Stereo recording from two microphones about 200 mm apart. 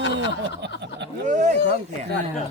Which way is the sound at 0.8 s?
60° right (ahead or behind).